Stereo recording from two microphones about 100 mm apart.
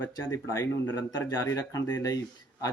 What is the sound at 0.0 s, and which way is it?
Speech, 25° left (ahead or behind).